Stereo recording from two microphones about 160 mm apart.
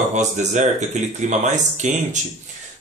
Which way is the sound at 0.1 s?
45° right (ahead or behind).